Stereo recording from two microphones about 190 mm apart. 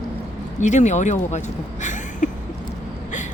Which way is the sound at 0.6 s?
40° left (ahead or behind).